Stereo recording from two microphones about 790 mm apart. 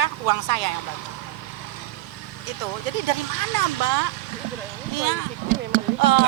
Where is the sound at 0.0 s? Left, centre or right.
Right.